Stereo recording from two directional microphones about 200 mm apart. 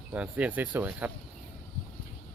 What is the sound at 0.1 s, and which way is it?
Speech, 5° right (ahead or behind).